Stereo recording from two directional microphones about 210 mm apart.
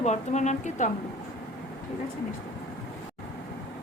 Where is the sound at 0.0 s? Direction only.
35° left (ahead or behind).